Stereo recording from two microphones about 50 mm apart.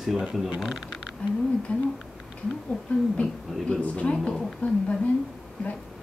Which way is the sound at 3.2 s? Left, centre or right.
Left.